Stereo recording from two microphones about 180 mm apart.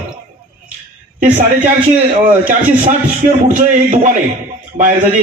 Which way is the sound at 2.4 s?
45° right (ahead or behind).